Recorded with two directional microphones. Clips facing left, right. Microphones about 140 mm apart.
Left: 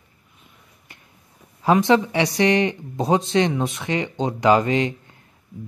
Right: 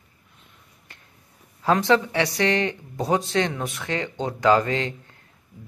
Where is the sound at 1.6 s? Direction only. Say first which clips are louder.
Left 3 dB; 20° left (ahead or behind).